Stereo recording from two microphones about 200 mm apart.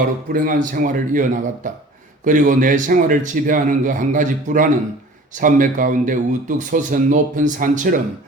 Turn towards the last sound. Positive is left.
turn(degrees=-40)  # may be behind; listen again after turning